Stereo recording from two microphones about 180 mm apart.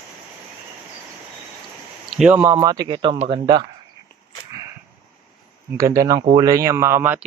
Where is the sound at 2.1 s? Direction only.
5° right (ahead or behind); by 3.6 s 25° right (ahead or behind).